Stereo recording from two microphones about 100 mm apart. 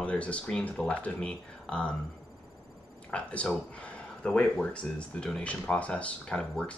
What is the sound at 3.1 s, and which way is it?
Speech, 10° left (ahead or behind).